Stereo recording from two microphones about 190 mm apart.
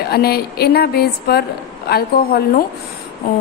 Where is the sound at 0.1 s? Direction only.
55° left (ahead or behind).